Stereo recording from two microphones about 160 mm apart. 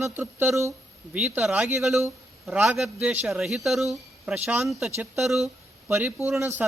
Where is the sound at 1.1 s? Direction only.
5° right (ahead or behind).